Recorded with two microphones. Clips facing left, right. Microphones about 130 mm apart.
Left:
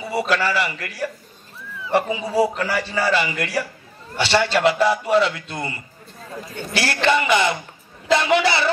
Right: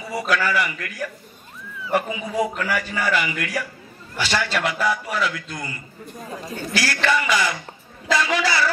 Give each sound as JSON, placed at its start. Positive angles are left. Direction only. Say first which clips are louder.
{"t": 0.1, "sound": "a man's voice", "louder": "left 1 dB", "side_deg": 30}